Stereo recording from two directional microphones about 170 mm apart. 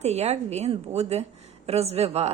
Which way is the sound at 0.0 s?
40° right (ahead or behind).